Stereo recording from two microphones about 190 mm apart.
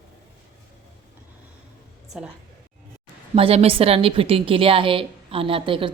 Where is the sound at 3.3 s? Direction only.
30° right (ahead or behind).